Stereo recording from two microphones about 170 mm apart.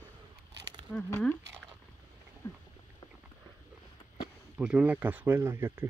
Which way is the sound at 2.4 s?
20° left (ahead or behind).